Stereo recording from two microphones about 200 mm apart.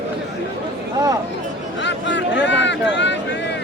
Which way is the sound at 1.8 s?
60° left (ahead or behind).